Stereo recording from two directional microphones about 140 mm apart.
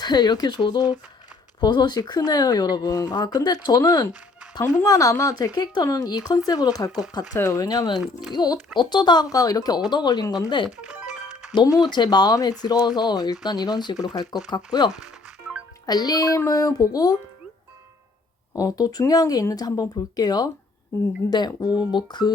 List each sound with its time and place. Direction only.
0.0 s speech: 30° left (ahead or behind)
7.9 s speech: 5° right (ahead or behind)
8.3 s speech: 30° left (ahead or behind)
18.5 s speech: 25° left (ahead or behind)